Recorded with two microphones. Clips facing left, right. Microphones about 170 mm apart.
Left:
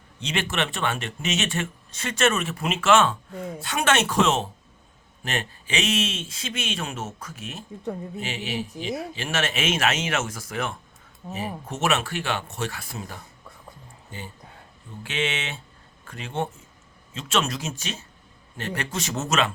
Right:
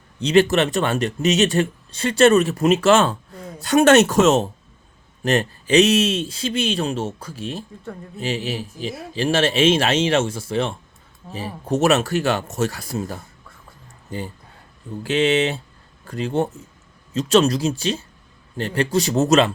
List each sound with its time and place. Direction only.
0.2 s speech: 35° right (ahead or behind)
15.0 s speech: 35° right (ahead or behind)